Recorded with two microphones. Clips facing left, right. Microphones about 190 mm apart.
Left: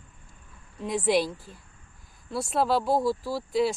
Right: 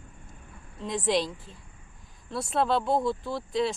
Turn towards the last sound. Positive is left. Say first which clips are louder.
# left 2 dB
turn(degrees=5)  # may be behind; listen again after turning